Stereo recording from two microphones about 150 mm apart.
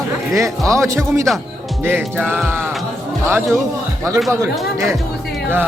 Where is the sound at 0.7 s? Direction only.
20° right (ahead or behind).